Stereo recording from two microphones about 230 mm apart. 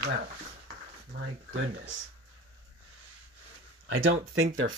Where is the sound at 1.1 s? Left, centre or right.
Right.